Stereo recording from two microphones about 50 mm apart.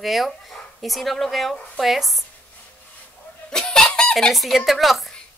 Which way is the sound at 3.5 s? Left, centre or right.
Centre.